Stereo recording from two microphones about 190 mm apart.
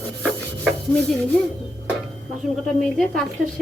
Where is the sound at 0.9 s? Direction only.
5° left (ahead or behind).